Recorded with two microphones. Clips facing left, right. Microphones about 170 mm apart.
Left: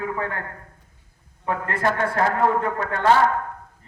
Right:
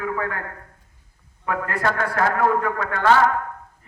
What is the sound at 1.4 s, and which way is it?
Speech, 25° left (ahead or behind).